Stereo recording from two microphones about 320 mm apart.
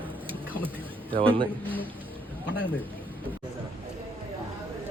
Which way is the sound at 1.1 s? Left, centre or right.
Centre.